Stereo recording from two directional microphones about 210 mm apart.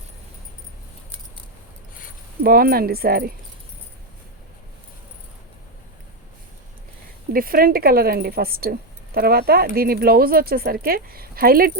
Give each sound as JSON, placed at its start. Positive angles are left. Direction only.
{"t": 2.4, "sound": "speech", "side_deg": -45}
{"t": 7.3, "sound": "speech", "side_deg": -45}